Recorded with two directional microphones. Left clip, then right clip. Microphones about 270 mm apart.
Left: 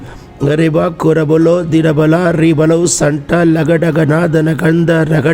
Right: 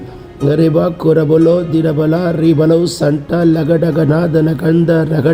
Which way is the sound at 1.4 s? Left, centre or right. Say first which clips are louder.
Left 1 dB; left.